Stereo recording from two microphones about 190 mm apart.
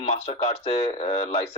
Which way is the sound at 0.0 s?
35° left (ahead or behind).